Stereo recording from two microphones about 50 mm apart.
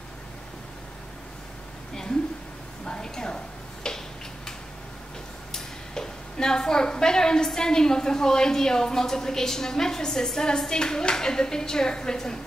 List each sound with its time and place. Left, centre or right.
2.8 s a sound: centre
3.8 s tick-tock: centre
5.5 s a woman's voice: centre